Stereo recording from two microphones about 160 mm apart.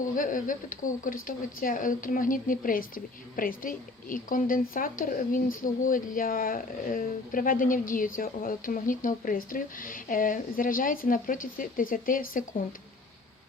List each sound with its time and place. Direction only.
0.2 s speech: 55° left (ahead or behind)